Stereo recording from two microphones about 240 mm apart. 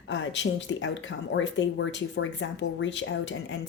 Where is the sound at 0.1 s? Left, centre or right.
Left.